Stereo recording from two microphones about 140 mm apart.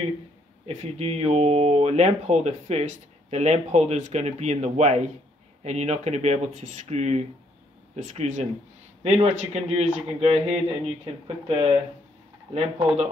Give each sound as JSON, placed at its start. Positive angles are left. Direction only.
{"t": 0.7, "sound": "speech", "side_deg": -45}